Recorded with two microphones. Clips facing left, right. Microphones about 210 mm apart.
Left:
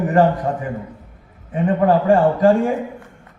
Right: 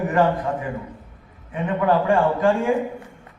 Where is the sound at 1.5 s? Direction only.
35° left (ahead or behind).